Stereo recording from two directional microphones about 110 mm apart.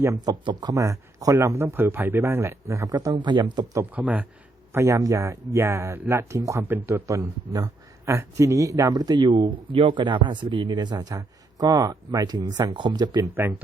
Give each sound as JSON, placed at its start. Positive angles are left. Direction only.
{"t": 0.0, "sound": "speech", "side_deg": -30}
{"t": 3.9, "sound": "speech", "side_deg": -15}
{"t": 4.7, "sound": "speech", "side_deg": -25}
{"t": 13.4, "sound": "speech", "side_deg": -15}